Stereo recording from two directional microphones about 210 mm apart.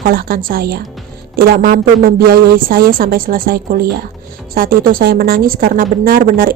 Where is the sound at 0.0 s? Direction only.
45° right (ahead or behind).